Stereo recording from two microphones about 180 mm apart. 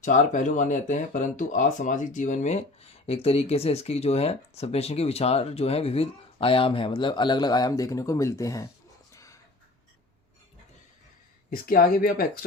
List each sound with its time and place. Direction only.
0.0 s speech: 45° left (ahead or behind); by 8.6 s 15° left (ahead or behind)
9.1 s a sound: 15° left (ahead or behind)
11.5 s speech: 55° left (ahead or behind)